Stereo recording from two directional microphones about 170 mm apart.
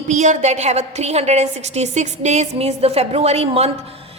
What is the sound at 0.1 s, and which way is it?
A woman's voice, 45° right (ahead or behind).